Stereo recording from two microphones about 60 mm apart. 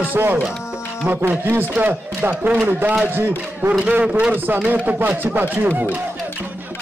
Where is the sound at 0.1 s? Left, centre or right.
Right; by 4.4 s centre.